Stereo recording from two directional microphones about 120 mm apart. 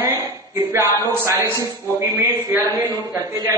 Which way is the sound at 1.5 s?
25° left (ahead or behind).